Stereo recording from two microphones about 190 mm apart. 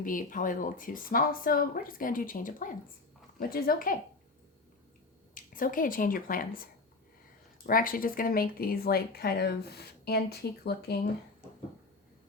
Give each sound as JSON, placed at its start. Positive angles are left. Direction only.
{"t": 0.0, "sound": "speech", "side_deg": 45}
{"t": 5.3, "sound": "speech", "side_deg": 45}
{"t": 7.7, "sound": "speech", "side_deg": 50}